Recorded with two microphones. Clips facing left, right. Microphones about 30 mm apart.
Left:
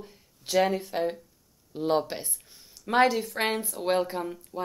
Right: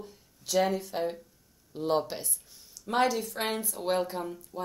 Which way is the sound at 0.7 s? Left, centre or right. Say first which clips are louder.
Left 3 dB; centre.